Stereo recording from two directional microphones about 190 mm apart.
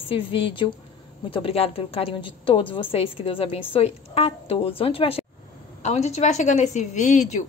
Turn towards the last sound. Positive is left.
turn(degrees=40)  # may be behind; listen again after turning